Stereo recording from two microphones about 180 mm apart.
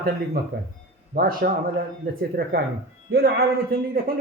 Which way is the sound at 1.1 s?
55° right (ahead or behind).